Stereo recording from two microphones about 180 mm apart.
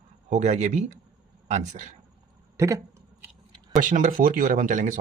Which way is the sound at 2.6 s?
15° right (ahead or behind).